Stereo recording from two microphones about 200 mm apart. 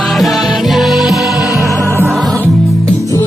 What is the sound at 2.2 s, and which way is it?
Music, 5° left (ahead or behind).